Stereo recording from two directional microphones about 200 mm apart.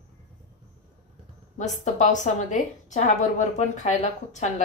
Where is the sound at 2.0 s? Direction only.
35° left (ahead or behind).